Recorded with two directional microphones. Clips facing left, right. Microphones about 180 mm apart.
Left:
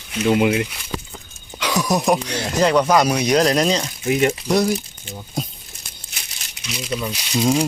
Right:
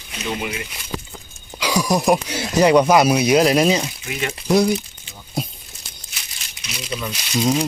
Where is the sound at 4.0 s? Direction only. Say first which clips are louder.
Left 9 dB; 40° left (ahead or behind).